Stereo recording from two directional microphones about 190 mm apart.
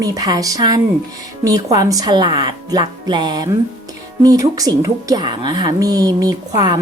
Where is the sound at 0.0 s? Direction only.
20° right (ahead or behind).